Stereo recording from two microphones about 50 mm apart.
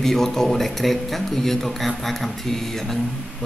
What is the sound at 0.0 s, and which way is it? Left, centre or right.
Speech, centre.